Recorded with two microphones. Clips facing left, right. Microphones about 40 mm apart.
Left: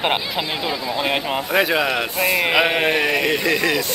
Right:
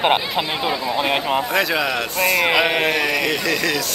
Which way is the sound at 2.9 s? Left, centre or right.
Centre.